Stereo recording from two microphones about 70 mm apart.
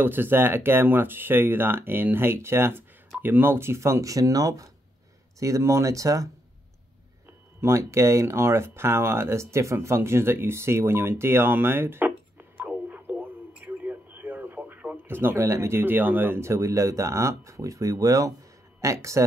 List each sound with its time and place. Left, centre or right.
0.0 s speech: right
5.4 s speech: right
7.6 s speech: right
12.6 s radio: right
18.8 s speech: right